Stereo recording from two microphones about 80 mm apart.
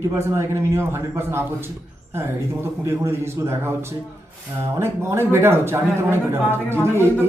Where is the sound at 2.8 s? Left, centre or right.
Right.